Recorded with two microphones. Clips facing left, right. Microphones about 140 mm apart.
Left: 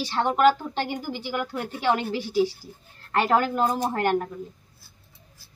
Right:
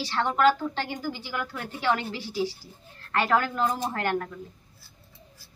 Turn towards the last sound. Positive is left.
turn(degrees=20)  # may be behind; listen again after turning